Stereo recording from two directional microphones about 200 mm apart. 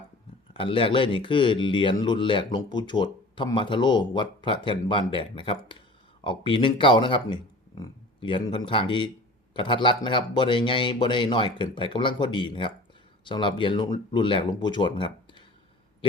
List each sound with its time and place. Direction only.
0.5 s speech: 25° left (ahead or behind)